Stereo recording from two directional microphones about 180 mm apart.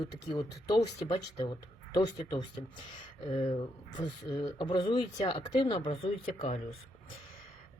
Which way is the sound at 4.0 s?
25° left (ahead or behind).